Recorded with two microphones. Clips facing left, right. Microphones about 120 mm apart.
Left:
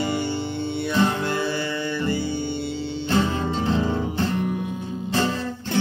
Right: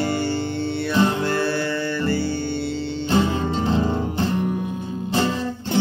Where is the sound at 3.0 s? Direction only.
15° right (ahead or behind).